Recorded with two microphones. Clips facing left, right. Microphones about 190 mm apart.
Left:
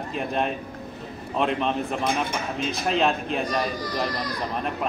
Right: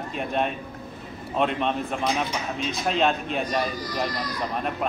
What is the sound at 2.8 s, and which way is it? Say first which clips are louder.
Speech: even; centre (ahead or behind).